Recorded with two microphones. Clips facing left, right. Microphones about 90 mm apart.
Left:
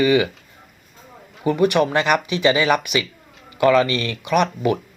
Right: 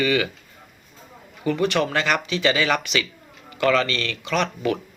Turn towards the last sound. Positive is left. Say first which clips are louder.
# left 5 dB
turn(degrees=15)  # may be behind; listen again after turning